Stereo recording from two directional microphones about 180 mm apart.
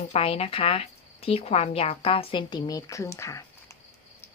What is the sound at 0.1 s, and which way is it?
Speech, 35° left (ahead or behind).